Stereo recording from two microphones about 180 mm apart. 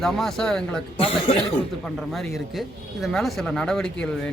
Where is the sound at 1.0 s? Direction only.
30° left (ahead or behind).